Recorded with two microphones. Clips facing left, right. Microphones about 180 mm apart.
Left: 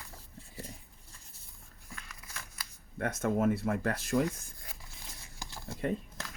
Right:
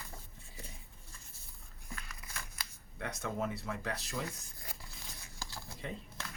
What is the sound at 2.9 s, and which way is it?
Speech, 50° left (ahead or behind).